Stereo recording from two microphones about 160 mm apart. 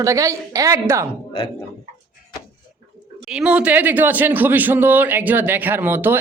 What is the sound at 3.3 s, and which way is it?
Speech, 5° right (ahead or behind).